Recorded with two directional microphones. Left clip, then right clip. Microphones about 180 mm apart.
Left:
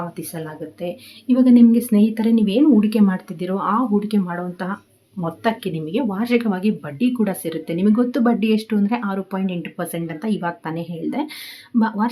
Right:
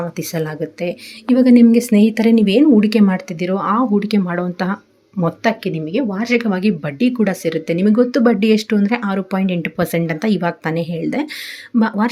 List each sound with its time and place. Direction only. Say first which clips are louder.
0.2 s speech: right 8 dB; 20° right (ahead or behind)